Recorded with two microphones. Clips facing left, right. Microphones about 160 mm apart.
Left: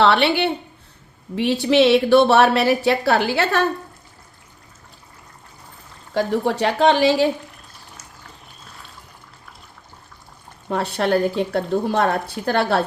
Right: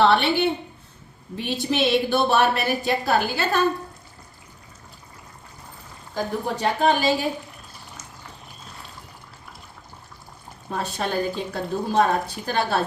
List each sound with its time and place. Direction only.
0.0 s a woman's voice: 75° left (ahead or behind)
6.1 s speech: 75° left (ahead or behind)
10.7 s speech: 70° left (ahead or behind)